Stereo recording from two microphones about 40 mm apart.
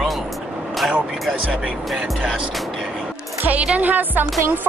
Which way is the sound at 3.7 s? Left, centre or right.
Right.